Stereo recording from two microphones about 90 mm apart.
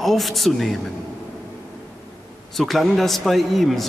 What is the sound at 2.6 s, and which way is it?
A man's voice, centre (ahead or behind).